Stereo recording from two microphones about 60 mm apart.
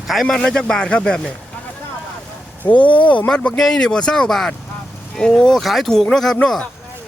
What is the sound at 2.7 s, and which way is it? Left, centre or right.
Speech, left.